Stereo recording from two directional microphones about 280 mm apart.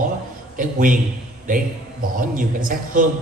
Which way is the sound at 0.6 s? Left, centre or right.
Right.